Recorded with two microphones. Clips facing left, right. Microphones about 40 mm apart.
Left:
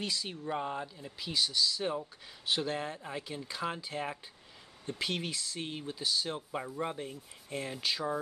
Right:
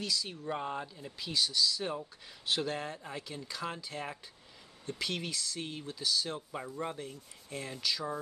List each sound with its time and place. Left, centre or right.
0.0 s speech: left
0.5 s speech: centre; by 8.0 s left